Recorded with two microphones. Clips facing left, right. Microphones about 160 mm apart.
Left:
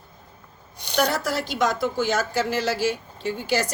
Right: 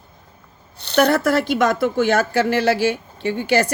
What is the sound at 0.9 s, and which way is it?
Speech, 60° right (ahead or behind).